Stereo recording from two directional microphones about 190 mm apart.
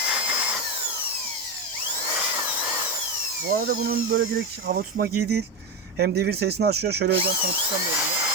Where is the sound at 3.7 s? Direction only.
50° right (ahead or behind).